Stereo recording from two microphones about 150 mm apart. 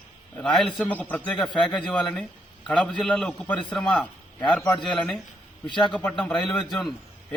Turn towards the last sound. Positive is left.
turn(degrees=0)  # may be behind; listen again after turning